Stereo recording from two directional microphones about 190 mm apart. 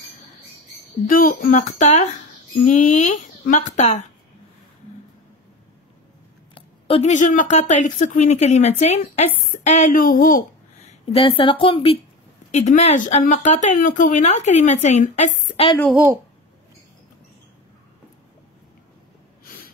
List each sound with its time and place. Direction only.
1.0 s speech: 45° left (ahead or behind)
6.5 s speech: 30° left (ahead or behind)
12.4 s speech: 40° left (ahead or behind)
15.9 s a woman's voice: 10° right (ahead or behind)